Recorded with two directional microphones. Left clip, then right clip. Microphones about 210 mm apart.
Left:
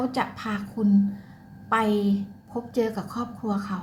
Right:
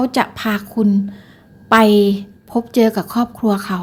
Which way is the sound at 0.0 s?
40° right (ahead or behind).